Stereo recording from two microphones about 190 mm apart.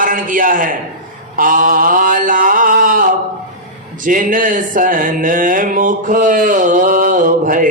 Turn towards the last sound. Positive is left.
turn(degrees=-45)  # may be behind; listen again after turning